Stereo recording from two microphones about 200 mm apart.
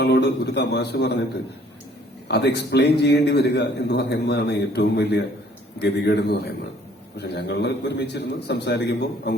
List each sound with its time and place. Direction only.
0.0 s a man's voice: 55° left (ahead or behind)
2.2 s a man's voice: 55° left (ahead or behind)